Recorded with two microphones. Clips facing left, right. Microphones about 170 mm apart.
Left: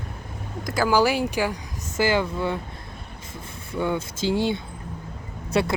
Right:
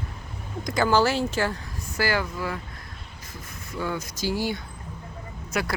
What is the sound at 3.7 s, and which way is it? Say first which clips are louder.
Speech: left 5 dB; 25° left (ahead or behind).